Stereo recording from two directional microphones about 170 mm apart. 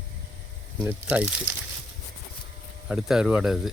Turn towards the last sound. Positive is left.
turn(degrees=0)  # may be behind; listen again after turning